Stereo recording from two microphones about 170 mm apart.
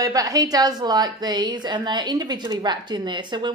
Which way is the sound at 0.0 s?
20° right (ahead or behind).